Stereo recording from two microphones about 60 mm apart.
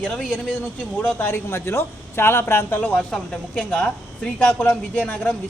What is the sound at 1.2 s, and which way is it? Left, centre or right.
Speech, left.